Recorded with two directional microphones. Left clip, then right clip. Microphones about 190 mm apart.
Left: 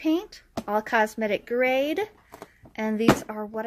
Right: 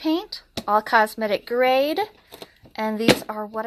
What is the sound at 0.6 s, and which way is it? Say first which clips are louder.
Speech: right 5 dB; 10° left (ahead or behind).